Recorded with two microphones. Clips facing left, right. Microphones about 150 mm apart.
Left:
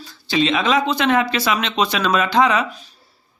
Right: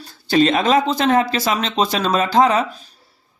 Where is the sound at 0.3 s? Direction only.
45° right (ahead or behind).